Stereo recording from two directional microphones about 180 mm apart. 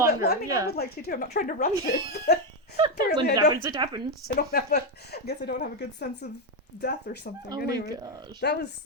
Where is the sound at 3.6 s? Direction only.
20° right (ahead or behind).